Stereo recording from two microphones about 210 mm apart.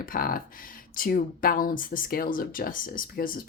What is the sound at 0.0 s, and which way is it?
A woman's voice, 40° left (ahead or behind).